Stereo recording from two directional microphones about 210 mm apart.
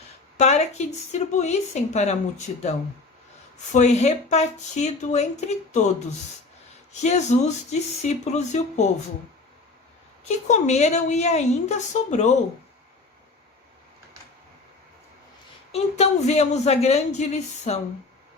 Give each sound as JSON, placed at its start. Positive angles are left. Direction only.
{"t": 0.3, "sound": "a woman's voice", "side_deg": 30}
{"t": 3.7, "sound": "a woman's voice", "side_deg": 35}
{"t": 7.0, "sound": "a woman's voice", "side_deg": 35}
{"t": 10.2, "sound": "a woman's voice", "side_deg": 35}
{"t": 15.7, "sound": "a woman's voice", "side_deg": 30}